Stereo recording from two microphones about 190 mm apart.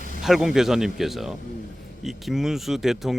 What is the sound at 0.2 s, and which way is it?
Speech, centre (ahead or behind).